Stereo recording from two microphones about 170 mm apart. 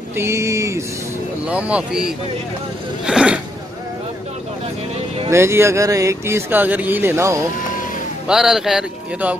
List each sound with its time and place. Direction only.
0.1 s speech: 15° right (ahead or behind)
3.1 s speech: 5° right (ahead or behind)
5.3 s speech: 15° right (ahead or behind)
8.3 s speech: 5° right (ahead or behind)